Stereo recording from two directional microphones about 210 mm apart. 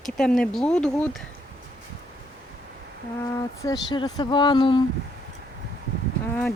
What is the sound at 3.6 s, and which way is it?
Speech, 20° left (ahead or behind).